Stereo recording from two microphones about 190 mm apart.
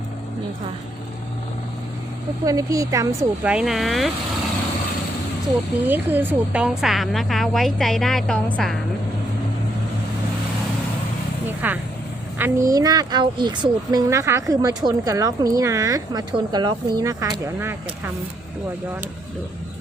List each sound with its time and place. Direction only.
2.4 s a woman's voice: 15° right (ahead or behind)
3.2 s a woman's voice: 5° right (ahead or behind)
5.8 s a woman's voice: 10° right (ahead or behind)
11.6 s a woman's voice: 10° right (ahead or behind)